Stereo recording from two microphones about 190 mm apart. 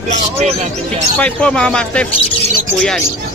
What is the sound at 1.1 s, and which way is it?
Speech, 5° left (ahead or behind).